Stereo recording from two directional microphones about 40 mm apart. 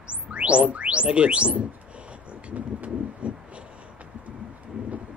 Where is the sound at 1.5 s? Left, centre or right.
Right.